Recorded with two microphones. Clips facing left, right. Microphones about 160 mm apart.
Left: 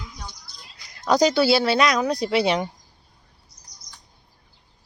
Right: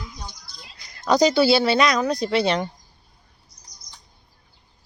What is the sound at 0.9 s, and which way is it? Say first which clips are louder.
Speech: right 1 dB; centre (ahead or behind).